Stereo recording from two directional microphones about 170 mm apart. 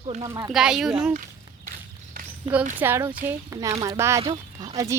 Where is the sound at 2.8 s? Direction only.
15° right (ahead or behind).